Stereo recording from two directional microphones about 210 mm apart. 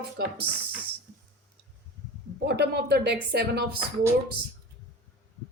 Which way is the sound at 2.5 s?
50° right (ahead or behind).